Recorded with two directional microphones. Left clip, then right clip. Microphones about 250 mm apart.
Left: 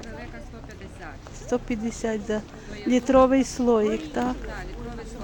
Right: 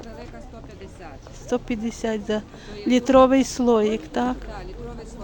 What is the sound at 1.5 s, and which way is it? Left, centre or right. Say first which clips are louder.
Speech: right 1 dB; centre.